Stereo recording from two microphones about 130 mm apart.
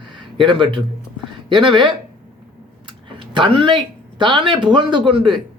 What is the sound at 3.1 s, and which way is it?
Speech, 40° right (ahead or behind).